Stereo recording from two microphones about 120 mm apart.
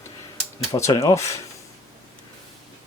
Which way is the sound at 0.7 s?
25° left (ahead or behind).